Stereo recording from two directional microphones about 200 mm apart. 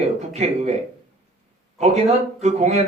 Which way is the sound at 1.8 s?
35° right (ahead or behind).